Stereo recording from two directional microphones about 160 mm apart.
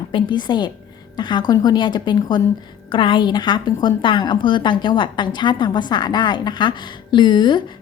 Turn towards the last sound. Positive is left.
turn(degrees=30)  # may be behind; listen again after turning